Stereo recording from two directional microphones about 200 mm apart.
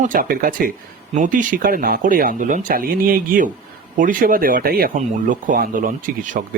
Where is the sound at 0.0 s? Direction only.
45° right (ahead or behind).